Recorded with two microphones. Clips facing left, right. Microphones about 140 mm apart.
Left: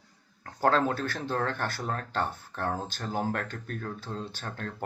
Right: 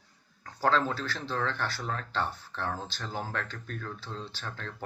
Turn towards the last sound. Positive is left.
turn(degrees=45)  # may be behind; listen again after turning